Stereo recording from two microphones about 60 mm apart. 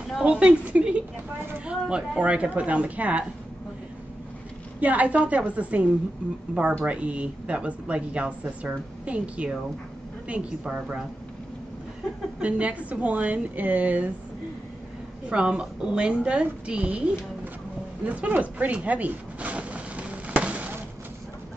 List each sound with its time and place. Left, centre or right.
0.2 s speech: centre
4.7 s a woman's voice: right
12.4 s speech: right
15.2 s a woman's voice: centre
18.0 s a sound: right